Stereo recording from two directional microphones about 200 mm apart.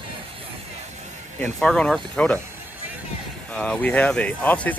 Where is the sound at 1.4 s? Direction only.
5° left (ahead or behind).